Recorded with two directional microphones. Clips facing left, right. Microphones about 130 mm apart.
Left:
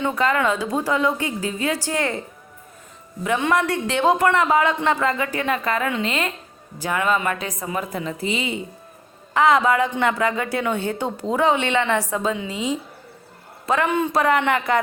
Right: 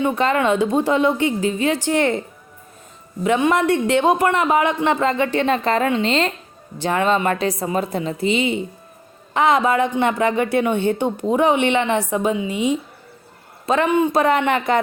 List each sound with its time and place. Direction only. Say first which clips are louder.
0.0 s a woman's voice: right 2 dB; 20° right (ahead or behind)
3.2 s a woman's voice: right 4 dB; 20° right (ahead or behind)